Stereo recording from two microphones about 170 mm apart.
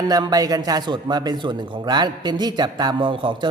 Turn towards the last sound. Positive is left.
turn(degrees=-30)  # may be behind; listen again after turning